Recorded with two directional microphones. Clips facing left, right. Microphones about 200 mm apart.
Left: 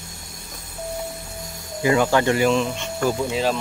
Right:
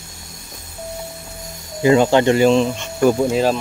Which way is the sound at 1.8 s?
25° right (ahead or behind).